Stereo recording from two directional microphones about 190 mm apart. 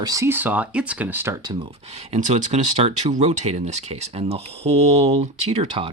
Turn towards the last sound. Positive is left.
turn(degrees=-30)  # may be behind; listen again after turning